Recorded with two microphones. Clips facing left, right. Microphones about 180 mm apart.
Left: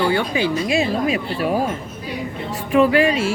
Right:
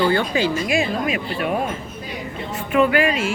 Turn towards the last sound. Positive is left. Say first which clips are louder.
# left 2 dB
turn(degrees=30)  # may be behind; listen again after turning